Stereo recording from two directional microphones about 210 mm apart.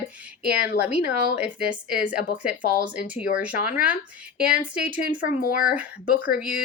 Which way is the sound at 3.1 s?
5° right (ahead or behind).